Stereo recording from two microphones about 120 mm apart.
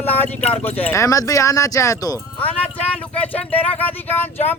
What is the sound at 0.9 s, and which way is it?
Speech, 25° left (ahead or behind).